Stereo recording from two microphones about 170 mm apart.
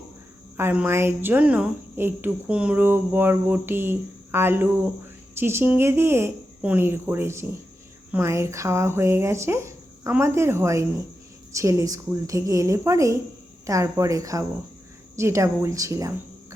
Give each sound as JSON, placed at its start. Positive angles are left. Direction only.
{"t": 0.5, "sound": "a woman's voice", "side_deg": -10}